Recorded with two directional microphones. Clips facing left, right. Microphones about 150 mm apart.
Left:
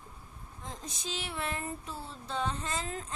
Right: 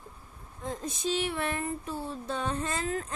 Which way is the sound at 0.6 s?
55° right (ahead or behind).